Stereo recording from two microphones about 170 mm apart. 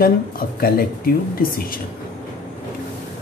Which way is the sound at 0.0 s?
60° left (ahead or behind).